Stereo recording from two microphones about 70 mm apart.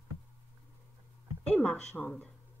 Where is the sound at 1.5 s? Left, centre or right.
Left.